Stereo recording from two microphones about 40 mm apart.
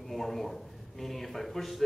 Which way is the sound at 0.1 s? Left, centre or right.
Centre.